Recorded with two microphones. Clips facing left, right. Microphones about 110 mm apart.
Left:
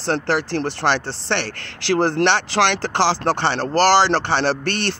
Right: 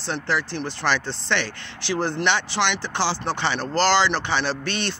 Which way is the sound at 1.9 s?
90° left.